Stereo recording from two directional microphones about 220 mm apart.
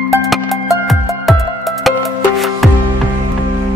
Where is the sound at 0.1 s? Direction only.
Centre (ahead or behind).